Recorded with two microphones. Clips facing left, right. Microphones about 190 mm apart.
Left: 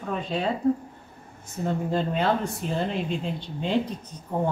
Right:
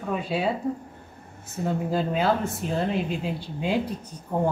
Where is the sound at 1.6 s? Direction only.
5° right (ahead or behind).